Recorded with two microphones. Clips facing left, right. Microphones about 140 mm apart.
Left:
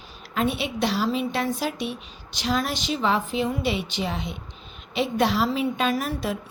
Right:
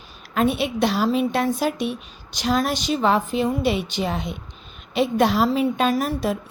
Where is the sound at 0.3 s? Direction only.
50° right (ahead or behind).